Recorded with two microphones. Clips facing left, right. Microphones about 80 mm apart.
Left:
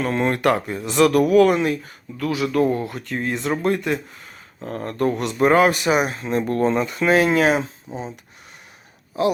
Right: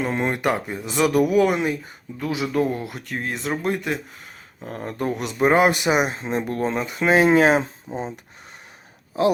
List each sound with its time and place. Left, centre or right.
0.0 s speech: centre
2.6 s speech: centre; by 6.4 s right
6.4 s speech: centre; by 8.2 s right